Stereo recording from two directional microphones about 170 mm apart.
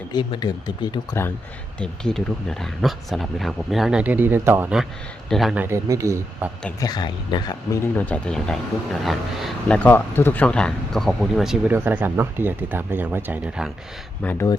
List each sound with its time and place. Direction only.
0.1 s speech: 25° left (ahead or behind)
1.8 s speech: 5° left (ahead or behind)
5.6 s speech: 15° right (ahead or behind)
6.7 s speech: 25° left (ahead or behind)
7.9 s speech: 10° left (ahead or behind); by 13.7 s 10° right (ahead or behind)
14.3 s speech: 20° left (ahead or behind)